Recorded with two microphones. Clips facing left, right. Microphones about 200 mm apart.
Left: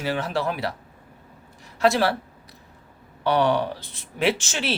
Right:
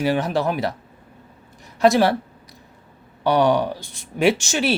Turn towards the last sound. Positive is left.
turn(degrees=-15)  # may be behind; listen again after turning